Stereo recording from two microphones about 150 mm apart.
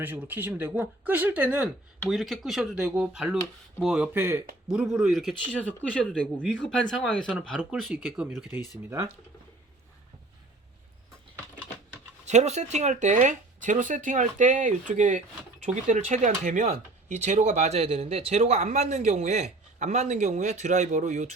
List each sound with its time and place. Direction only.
0.0 s speech: 10° right (ahead or behind)
12.2 s speech: 50° right (ahead or behind)